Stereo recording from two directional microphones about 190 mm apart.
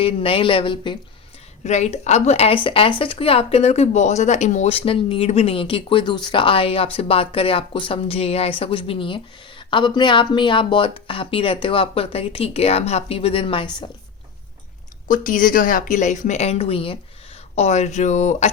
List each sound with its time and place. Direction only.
0.0 s speech: 30° left (ahead or behind)
1.6 s a woman's voice: 35° left (ahead or behind)
15.0 s a woman's voice: 45° left (ahead or behind)